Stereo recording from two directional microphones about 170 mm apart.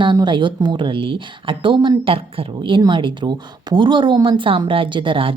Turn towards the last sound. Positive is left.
turn(degrees=-30)  # may be behind; listen again after turning